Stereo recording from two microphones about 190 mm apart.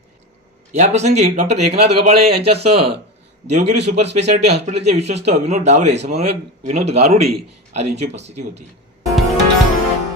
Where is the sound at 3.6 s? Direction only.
60° right (ahead or behind).